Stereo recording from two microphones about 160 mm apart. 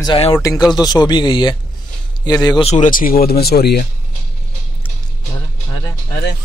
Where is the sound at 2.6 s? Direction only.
50° left (ahead or behind); by 3.8 s 80° left.